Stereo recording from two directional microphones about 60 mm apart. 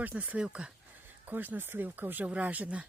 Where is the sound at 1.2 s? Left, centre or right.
Right.